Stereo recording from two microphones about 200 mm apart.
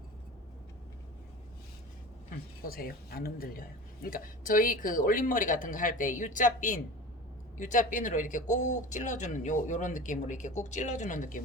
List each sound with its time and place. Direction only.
2.6 s speech: 45° left (ahead or behind)